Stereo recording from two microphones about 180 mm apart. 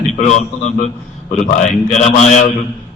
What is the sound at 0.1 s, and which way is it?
A man's voice, 40° left (ahead or behind).